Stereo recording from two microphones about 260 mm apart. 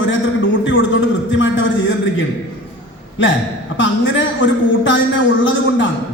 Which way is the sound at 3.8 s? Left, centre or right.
Left.